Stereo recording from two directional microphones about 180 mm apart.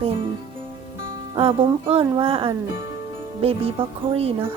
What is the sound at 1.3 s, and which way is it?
Speech, 30° right (ahead or behind).